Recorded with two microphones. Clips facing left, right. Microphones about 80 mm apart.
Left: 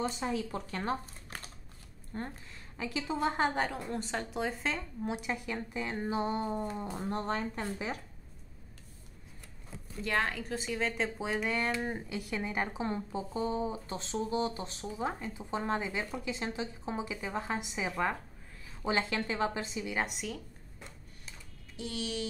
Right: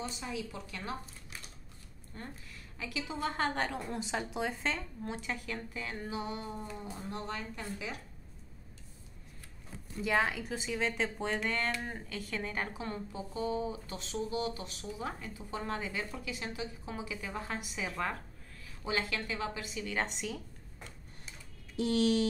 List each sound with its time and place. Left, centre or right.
0.2 s speech: left
2.1 s a woman's voice: left
3.4 s speech: centre
5.0 s speech: centre
6.7 s speech: left
10.0 s speech: centre; by 19.9 s left
19.9 s speech: centre
21.7 s music: right